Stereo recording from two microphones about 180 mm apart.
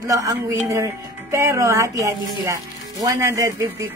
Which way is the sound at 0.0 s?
20° right (ahead or behind).